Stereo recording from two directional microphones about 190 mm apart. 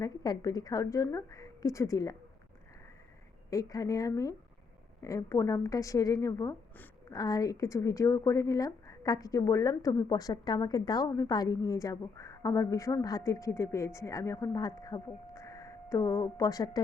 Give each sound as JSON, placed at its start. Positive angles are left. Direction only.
{"t": 0.0, "sound": "speech", "side_deg": 20}
{"t": 3.5, "sound": "speech", "side_deg": 20}